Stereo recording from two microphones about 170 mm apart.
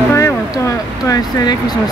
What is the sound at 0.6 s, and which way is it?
Speech, 20° left (ahead or behind).